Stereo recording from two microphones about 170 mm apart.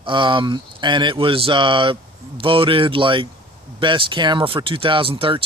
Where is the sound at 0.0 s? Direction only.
30° right (ahead or behind).